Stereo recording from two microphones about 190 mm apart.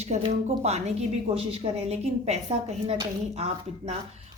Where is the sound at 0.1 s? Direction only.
40° right (ahead or behind).